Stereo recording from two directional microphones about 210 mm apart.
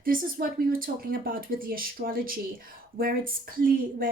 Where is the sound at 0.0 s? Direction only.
40° right (ahead or behind).